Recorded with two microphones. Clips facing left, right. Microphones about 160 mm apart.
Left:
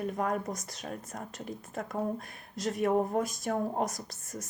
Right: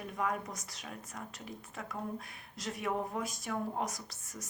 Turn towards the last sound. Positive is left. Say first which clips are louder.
# left 6 dB
turn(degrees=50)  # may be behind; listen again after turning